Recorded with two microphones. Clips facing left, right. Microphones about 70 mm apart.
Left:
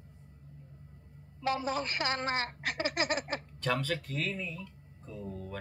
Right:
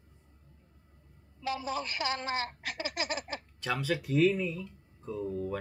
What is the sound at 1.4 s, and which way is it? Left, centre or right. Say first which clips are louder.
A woman's voice: left 2 dB; left.